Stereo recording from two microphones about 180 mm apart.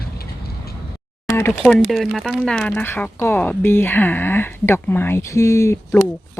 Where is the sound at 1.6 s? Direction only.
5° left (ahead or behind).